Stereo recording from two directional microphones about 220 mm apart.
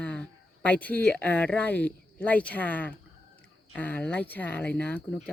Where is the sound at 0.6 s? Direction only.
5° left (ahead or behind).